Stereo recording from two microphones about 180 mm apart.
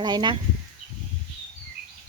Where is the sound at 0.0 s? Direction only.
25° right (ahead or behind).